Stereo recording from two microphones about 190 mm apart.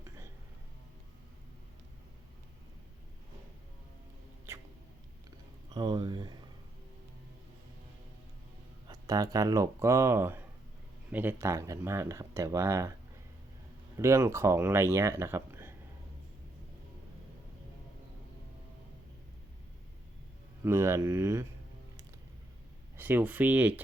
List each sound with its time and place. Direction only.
4.5 s rodents: 15° right (ahead or behind)
5.7 s speech: 20° right (ahead or behind)
8.9 s speech: 20° right (ahead or behind)
13.9 s speech: 15° right (ahead or behind)
20.7 s speech: 15° right (ahead or behind)
23.0 s speech: 10° right (ahead or behind)